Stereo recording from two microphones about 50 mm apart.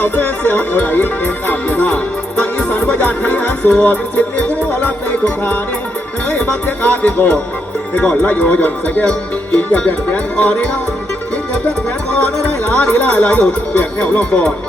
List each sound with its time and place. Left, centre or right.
0.0 s speech: left
1.9 s speech: left
12.7 s speech: left
14.3 s speech: left